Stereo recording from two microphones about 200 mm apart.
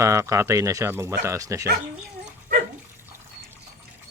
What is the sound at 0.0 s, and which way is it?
Speech, 15° right (ahead or behind).